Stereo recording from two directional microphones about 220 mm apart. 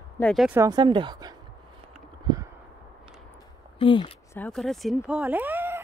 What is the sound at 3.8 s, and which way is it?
Speech, 20° left (ahead or behind).